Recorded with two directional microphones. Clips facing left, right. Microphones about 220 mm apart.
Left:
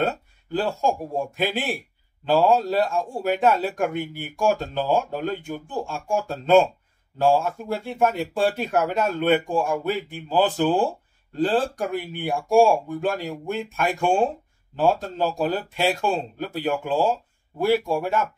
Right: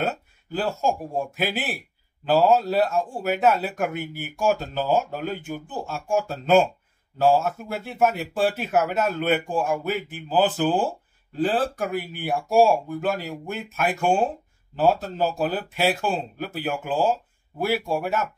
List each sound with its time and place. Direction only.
0.0 s speech: 5° right (ahead or behind)